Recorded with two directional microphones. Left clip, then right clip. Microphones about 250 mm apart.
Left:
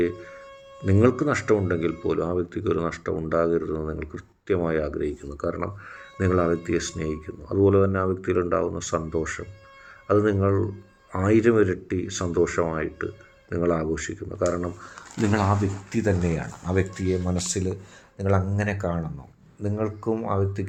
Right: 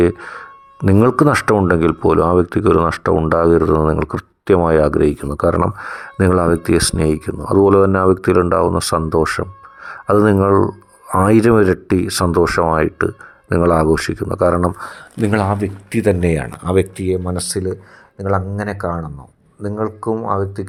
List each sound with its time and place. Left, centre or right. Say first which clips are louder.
0.0 s speech: right 10 dB; right
15.2 s speech: right 7 dB; right
18.3 s speech: right 6 dB; centre